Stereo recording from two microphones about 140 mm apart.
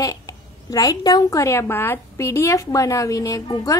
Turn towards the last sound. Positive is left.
turn(degrees=25)  # may be behind; listen again after turning